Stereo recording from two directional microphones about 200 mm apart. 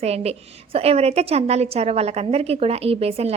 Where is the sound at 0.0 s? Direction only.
30° right (ahead or behind).